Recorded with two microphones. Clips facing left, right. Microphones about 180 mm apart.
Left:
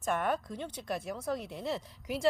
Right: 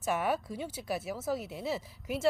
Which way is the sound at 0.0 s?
5° right (ahead or behind).